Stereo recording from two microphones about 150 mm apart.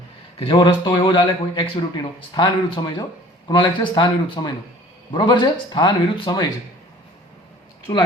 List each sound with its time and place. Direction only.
0.3 s speech: 35° left (ahead or behind)